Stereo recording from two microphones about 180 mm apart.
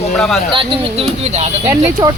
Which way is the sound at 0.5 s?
30° right (ahead or behind).